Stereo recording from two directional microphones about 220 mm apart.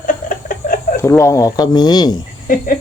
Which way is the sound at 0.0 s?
40° left (ahead or behind).